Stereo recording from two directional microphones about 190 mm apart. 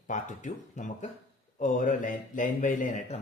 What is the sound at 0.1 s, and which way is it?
Speech, 40° left (ahead or behind).